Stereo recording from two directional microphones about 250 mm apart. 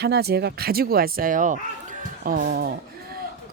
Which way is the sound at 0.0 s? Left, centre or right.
Right.